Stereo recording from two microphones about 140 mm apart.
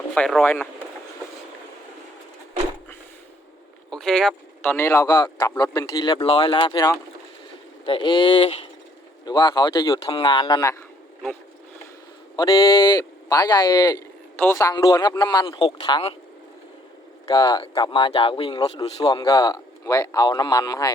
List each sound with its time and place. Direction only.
0.1 s speech: 5° left (ahead or behind)
3.8 s vehicle: 5° left (ahead or behind)
4.6 s speech: 15° left (ahead or behind); by 8.7 s 45° left (ahead or behind)
9.2 s speech: 30° left (ahead or behind)
12.4 s speech: 25° left (ahead or behind)
14.3 s speech: 15° left (ahead or behind)
17.2 s speech: 35° left (ahead or behind)